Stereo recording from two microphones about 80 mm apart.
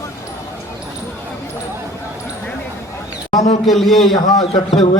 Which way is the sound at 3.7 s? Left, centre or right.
Centre.